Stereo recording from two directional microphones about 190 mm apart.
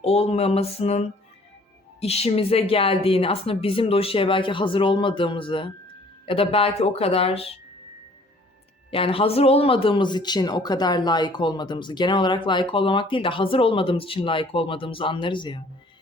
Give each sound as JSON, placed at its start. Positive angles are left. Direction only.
{"t": 0.0, "sound": "speech", "side_deg": 35}
{"t": 8.9, "sound": "speech", "side_deg": 30}